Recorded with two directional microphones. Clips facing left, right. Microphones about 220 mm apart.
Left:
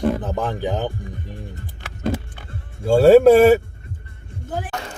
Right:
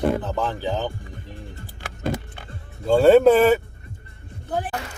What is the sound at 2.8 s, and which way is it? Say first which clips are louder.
Speech: left 3 dB; 10° left (ahead or behind).